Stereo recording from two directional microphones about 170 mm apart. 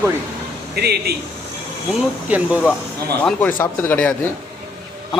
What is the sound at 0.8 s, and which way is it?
Speech, 70° right (ahead or behind).